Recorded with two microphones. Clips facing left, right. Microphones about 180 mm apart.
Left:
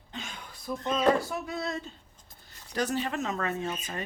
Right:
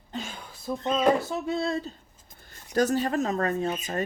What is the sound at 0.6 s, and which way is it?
Speech, 20° right (ahead or behind).